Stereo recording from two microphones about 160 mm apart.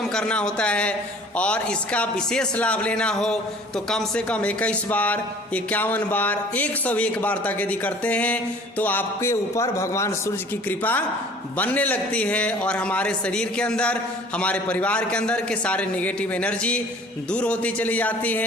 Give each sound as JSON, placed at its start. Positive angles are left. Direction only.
{"t": 0.1, "sound": "a man's voice", "side_deg": 5}